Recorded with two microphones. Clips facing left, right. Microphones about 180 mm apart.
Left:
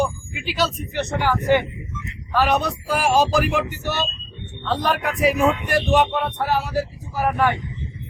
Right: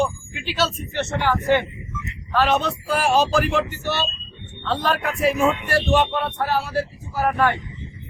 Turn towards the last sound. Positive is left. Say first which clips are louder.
# even
turn(degrees=15)  # may be behind; listen again after turning